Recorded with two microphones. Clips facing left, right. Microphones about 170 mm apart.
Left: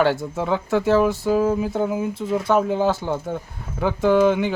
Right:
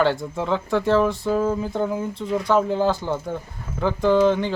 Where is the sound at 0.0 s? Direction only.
5° left (ahead or behind).